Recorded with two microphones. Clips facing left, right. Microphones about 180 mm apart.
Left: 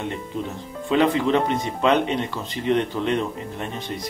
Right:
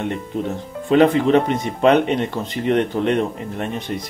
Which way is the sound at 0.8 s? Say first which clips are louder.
Right 5 dB; 55° right (ahead or behind).